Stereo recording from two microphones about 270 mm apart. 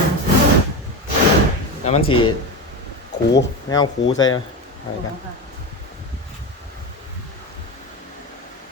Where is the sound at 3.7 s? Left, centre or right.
Centre.